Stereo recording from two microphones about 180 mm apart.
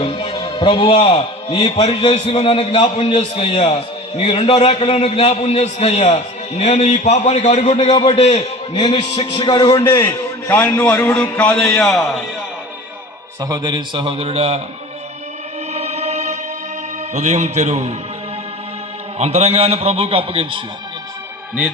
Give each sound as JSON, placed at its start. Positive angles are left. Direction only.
{"t": 0.0, "sound": "a man's voice", "side_deg": 30}
{"t": 13.4, "sound": "a man's voice", "side_deg": -20}
{"t": 15.7, "sound": "music", "side_deg": -35}
{"t": 17.2, "sound": "a man's voice", "side_deg": -40}
{"t": 19.2, "sound": "a man's voice", "side_deg": -35}